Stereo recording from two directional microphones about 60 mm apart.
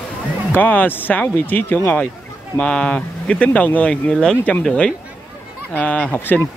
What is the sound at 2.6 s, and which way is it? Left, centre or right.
Speech, centre.